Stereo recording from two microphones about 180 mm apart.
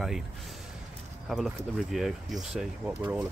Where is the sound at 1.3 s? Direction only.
Centre (ahead or behind).